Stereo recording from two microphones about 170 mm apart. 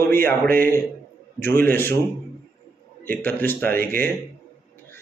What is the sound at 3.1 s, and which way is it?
Mantra, 10° left (ahead or behind).